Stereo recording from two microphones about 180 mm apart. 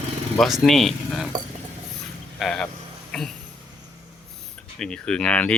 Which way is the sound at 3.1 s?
5° left (ahead or behind).